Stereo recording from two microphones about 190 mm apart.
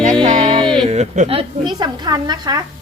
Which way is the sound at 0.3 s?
30° right (ahead or behind).